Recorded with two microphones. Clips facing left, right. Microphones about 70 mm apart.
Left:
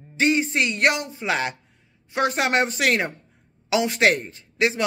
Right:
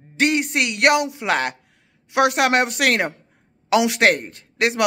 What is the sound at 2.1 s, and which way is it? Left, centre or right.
Speech, right.